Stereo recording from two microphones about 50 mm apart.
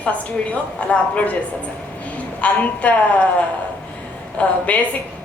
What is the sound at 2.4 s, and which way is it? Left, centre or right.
Speech, left.